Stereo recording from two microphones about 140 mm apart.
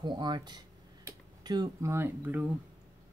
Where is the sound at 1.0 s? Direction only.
30° right (ahead or behind).